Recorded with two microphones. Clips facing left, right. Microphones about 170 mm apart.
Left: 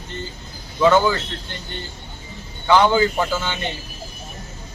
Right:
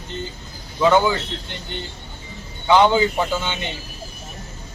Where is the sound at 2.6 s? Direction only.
20° right (ahead or behind).